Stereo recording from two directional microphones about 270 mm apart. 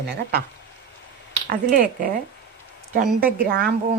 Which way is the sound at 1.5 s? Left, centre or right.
Right.